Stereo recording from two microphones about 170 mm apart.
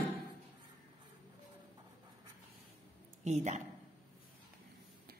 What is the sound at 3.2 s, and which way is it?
Speech, 45° right (ahead or behind).